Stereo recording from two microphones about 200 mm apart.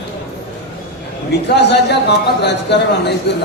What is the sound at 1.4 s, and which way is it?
A man's voice, 55° left (ahead or behind).